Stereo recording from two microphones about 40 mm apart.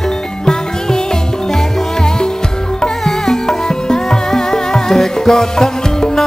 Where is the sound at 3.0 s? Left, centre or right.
Centre.